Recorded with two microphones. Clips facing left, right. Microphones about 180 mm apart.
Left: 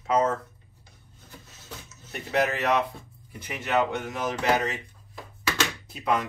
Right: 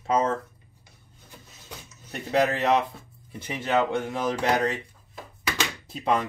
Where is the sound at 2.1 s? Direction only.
30° right (ahead or behind).